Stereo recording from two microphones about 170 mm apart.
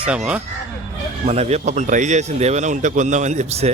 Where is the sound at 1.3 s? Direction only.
40° right (ahead or behind).